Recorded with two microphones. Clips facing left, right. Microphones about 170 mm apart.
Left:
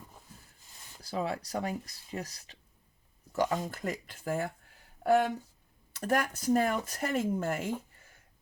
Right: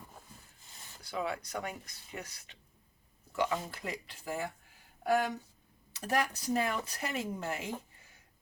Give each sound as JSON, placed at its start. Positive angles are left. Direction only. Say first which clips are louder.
{"t": 1.0, "sound": "speech", "louder": "left 3 dB", "side_deg": 35}
{"t": 6.0, "sound": "speech", "louder": "left 3 dB", "side_deg": 50}